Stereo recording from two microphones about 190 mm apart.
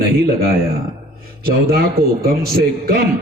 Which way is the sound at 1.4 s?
55° right (ahead or behind).